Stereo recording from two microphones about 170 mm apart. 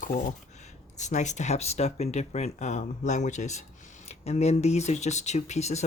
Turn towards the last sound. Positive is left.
turn(degrees=40)  # may be behind; listen again after turning